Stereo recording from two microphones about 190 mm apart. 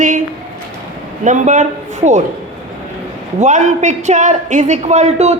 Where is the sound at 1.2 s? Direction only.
40° right (ahead or behind).